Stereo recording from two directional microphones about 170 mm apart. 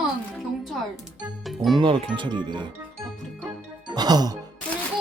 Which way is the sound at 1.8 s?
30° right (ahead or behind).